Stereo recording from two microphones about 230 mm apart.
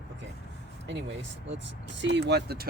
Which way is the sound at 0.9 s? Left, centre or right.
Right.